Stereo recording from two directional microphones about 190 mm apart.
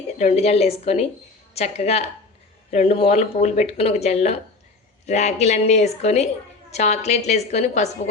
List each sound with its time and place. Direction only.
0.2 s speech: 35° left (ahead or behind)